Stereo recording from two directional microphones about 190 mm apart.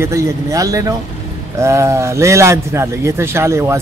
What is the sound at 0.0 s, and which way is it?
A man's voice, 15° right (ahead or behind).